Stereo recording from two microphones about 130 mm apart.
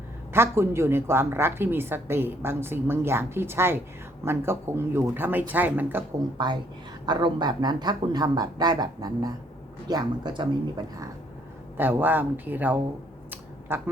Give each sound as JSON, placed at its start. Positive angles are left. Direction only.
{"t": 0.3, "sound": "a woman's voice", "side_deg": -20}
{"t": 6.3, "sound": "speech", "side_deg": -35}
{"t": 11.8, "sound": "a woman's voice", "side_deg": -15}
{"t": 13.3, "sound": "finger snapping", "side_deg": -15}